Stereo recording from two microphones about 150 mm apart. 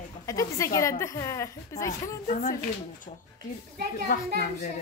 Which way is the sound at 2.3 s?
60° left (ahead or behind).